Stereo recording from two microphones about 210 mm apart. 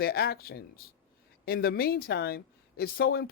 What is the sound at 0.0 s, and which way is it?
Speech, 50° left (ahead or behind).